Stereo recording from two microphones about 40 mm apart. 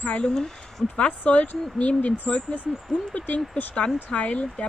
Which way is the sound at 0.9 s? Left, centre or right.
Left.